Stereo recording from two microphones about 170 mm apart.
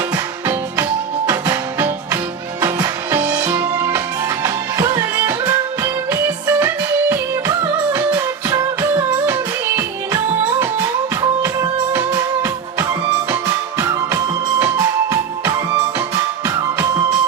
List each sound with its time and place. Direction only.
1.3 s music: 20° right (ahead or behind)
11.2 s music: 20° right (ahead or behind)